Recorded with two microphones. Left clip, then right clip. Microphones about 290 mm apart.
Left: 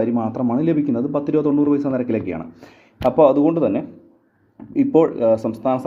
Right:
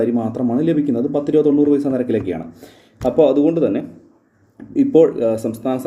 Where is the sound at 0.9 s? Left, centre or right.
Centre.